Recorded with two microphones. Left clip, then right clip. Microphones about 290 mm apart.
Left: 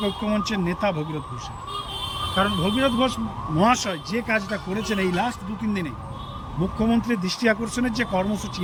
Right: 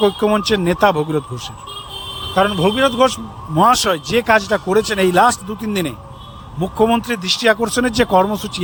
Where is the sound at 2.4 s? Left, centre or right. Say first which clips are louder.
Right 8 dB; centre.